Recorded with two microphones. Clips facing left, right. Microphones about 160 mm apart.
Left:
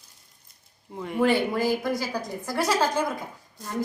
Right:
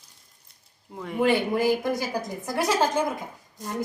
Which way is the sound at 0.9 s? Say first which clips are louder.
Left 2 dB; centre (ahead or behind).